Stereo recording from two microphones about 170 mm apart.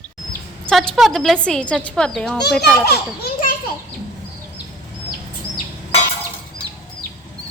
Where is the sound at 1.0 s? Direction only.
Centre (ahead or behind).